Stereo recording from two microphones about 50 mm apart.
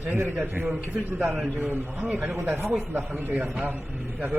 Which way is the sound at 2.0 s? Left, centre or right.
Right.